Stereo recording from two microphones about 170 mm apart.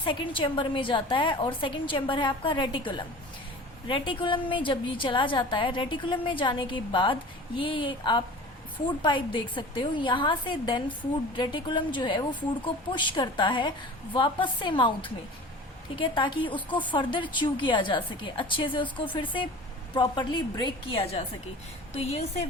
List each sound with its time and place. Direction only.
0.0 s a woman's voice: 30° left (ahead or behind)